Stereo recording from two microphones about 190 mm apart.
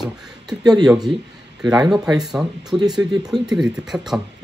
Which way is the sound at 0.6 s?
20° right (ahead or behind).